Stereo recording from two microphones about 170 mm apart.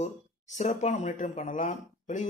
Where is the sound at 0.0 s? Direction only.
45° left (ahead or behind).